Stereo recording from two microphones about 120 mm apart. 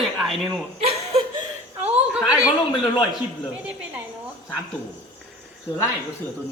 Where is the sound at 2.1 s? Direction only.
10° right (ahead or behind).